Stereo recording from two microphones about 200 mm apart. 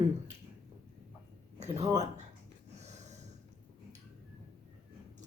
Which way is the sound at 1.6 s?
35° right (ahead or behind).